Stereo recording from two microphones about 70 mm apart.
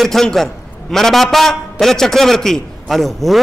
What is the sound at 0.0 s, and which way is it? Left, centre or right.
A man's voice, centre.